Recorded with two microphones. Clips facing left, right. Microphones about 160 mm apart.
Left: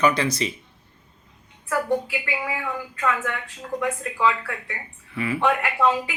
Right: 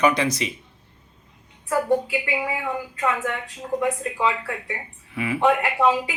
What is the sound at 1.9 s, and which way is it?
Speech, 20° right (ahead or behind).